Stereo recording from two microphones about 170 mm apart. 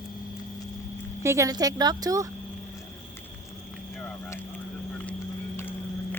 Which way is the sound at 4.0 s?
10° left (ahead or behind).